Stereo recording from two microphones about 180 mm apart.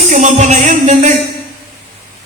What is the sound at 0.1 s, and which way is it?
A man's voice, 45° right (ahead or behind).